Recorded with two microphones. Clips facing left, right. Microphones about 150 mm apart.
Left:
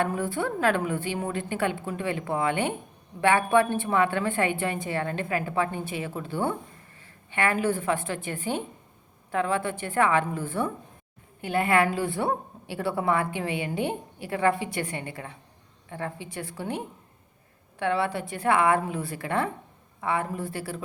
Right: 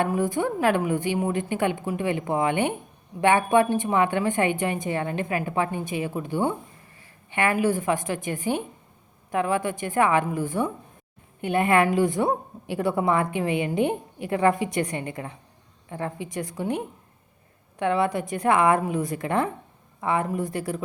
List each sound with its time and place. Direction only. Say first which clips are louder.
0.0 s a woman's voice: right 3 dB; 15° right (ahead or behind)